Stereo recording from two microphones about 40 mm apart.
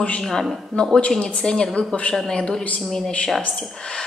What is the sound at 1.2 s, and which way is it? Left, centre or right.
A woman's voice, centre.